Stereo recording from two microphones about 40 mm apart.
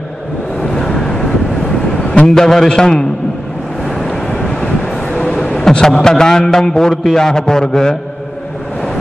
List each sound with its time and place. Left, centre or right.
0.6 s vehicle: centre
2.2 s a man's voice: centre
4.0 s vehicle: centre
5.2 s vehicle: left
6.0 s a man's voice: centre